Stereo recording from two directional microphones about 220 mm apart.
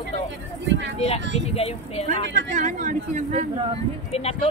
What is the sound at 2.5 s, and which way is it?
Speech, 35° right (ahead or behind).